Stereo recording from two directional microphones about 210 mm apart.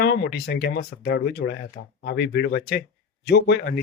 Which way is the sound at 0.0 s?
50° left (ahead or behind).